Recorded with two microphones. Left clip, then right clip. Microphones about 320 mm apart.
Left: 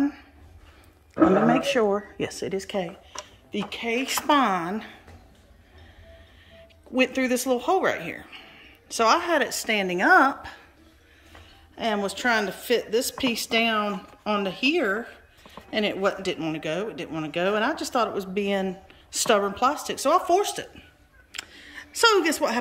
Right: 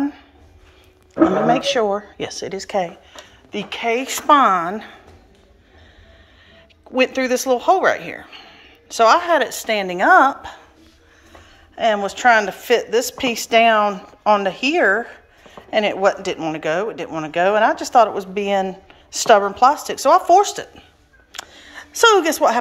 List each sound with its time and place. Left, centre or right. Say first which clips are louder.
1.4 s speech: right 5 dB; left
1.8 s speech: right 4 dB; centre
6.5 s speech: right 6 dB; centre
11.7 s a woman's voice: right 8 dB; centre
21.3 s a sound: right 3 dB; centre